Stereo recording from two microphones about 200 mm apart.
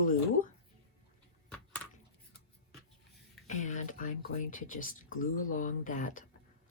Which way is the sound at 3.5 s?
35° left (ahead or behind).